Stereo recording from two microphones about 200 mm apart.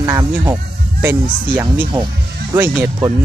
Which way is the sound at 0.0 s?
15° right (ahead or behind).